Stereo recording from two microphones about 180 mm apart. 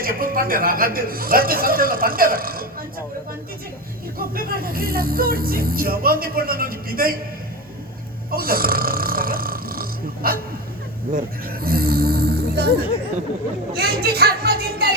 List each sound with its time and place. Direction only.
0.0 s a man's voice: 50° right (ahead or behind)
4.2 s speech: 55° right (ahead or behind)
8.3 s speech: 55° right (ahead or behind)
13.7 s speech: 60° right (ahead or behind)